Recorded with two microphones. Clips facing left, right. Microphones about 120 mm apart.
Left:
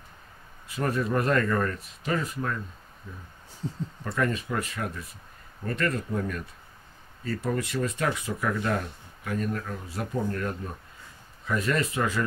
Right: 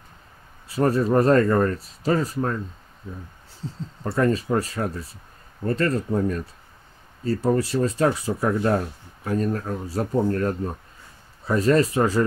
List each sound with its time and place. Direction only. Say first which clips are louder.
0.7 s speech: right 7 dB; 35° right (ahead or behind)
4.0 s speech: right 7 dB; 30° right (ahead or behind)